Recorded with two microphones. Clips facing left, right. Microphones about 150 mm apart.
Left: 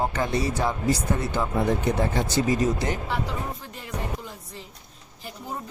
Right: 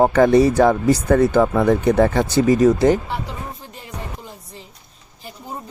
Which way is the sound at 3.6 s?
30° right (ahead or behind).